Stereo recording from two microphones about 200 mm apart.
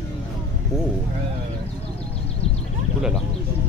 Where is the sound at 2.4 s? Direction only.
30° left (ahead or behind).